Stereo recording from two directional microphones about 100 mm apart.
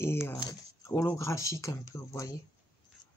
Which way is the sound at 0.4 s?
35° left (ahead or behind).